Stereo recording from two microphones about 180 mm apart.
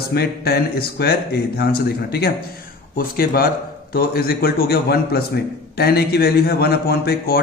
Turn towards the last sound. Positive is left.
turn(degrees=60)  # may be behind; listen again after turning